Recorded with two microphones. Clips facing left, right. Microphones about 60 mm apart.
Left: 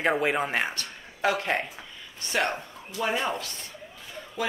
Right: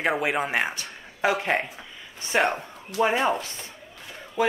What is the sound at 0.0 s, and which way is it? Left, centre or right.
Speech, centre.